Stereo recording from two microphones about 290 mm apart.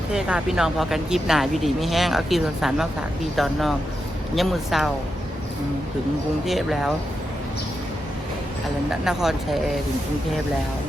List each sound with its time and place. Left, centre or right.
0.1 s speech: centre
6.4 s speech: centre
9.0 s speech: centre